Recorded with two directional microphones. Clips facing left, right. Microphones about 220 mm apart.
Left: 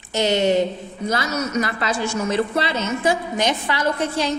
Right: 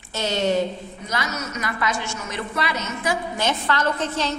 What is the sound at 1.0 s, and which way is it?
A woman's voice, 30° left (ahead or behind).